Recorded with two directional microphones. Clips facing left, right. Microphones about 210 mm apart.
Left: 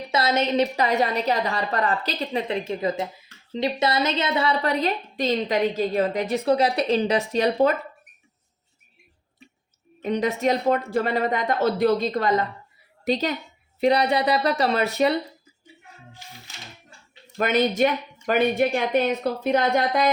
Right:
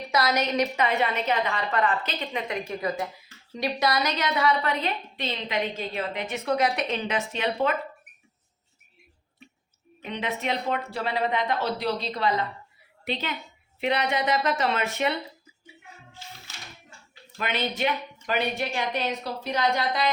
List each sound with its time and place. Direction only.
0.1 s a woman's voice: 25° left (ahead or behind)
10.0 s a woman's voice: 40° left (ahead or behind)
17.3 s a woman's voice: 45° left (ahead or behind)